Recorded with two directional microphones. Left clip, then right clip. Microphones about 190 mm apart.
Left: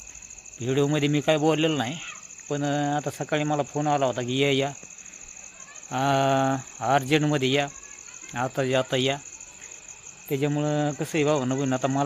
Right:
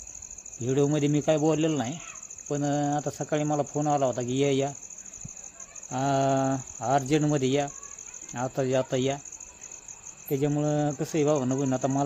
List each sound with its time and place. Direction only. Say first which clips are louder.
0.6 s speech: left 1 dB; 5° left (ahead or behind)
5.9 s speech: left 3 dB; 5° left (ahead or behind)
10.2 s speech: left 1 dB; centre (ahead or behind)